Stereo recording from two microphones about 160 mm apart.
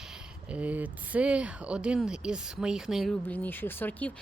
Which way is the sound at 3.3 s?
10° left (ahead or behind).